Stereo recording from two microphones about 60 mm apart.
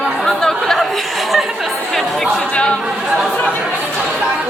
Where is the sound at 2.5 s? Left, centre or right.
Centre.